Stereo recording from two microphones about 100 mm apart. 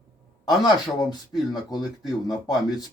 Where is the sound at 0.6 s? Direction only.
45° left (ahead or behind).